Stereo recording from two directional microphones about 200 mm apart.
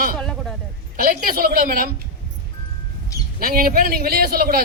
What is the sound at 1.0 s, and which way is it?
Speech, 45° right (ahead or behind).